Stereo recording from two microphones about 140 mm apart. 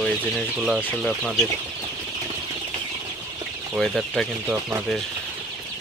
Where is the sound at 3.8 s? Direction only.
Centre (ahead or behind).